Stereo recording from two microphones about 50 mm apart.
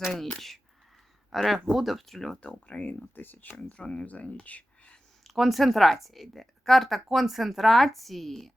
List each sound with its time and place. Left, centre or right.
0.1 s speech: centre
2.4 s speech: left
2.9 s speech: left
3.6 s speech: left
5.2 s speech: centre